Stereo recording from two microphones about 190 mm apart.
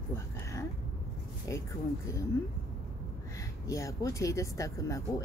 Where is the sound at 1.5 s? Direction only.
15° left (ahead or behind).